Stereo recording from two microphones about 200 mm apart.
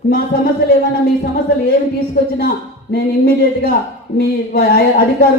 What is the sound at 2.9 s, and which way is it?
Speech, 50° left (ahead or behind).